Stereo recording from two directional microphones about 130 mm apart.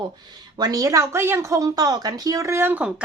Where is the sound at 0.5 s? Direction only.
30° right (ahead or behind).